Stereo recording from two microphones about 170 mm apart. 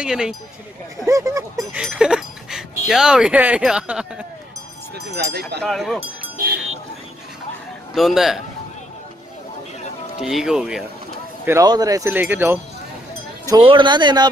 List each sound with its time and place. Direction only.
0.0 s speech: 5° right (ahead or behind)
1.0 s speech: 20° right (ahead or behind)
1.7 s speech: 5° right (ahead or behind)
4.9 s speech: 75° right (ahead or behind)
5.6 s speech: centre (ahead or behind)
7.9 s speech: centre (ahead or behind)
10.2 s speech: 5° right (ahead or behind)
11.4 s speech: 20° right (ahead or behind)
13.5 s speech: 30° right (ahead or behind)